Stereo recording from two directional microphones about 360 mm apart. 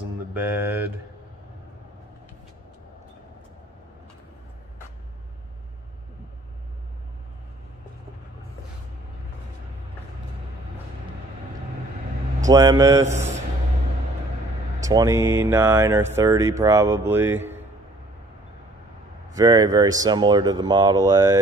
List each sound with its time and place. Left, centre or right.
0.3 s speech: centre
12.4 s speech: centre
14.8 s speech: centre
19.3 s speech: centre